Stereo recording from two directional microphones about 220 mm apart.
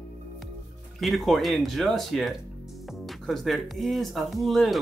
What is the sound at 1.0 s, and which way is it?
Speech, centre (ahead or behind).